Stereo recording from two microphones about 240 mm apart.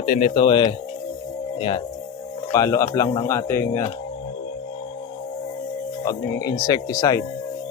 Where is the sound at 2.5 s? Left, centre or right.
Centre.